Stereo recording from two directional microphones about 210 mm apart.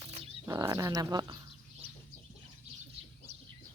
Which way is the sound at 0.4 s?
15° right (ahead or behind).